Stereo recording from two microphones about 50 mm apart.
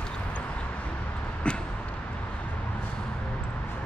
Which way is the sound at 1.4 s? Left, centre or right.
Left.